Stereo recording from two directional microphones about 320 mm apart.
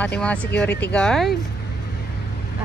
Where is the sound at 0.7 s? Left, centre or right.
Left.